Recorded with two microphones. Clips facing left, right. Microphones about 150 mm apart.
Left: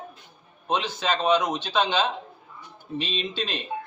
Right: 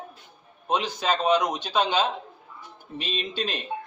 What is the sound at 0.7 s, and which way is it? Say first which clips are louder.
A man's voice: right 1 dB; 10° right (ahead or behind).